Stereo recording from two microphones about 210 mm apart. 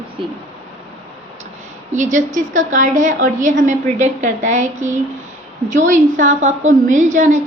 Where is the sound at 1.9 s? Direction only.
35° right (ahead or behind).